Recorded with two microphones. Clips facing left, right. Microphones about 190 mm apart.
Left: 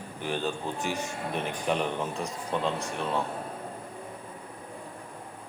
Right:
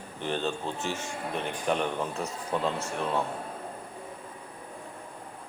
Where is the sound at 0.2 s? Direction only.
10° left (ahead or behind).